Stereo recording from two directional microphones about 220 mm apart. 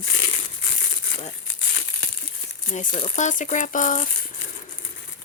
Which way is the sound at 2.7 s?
35° left (ahead or behind).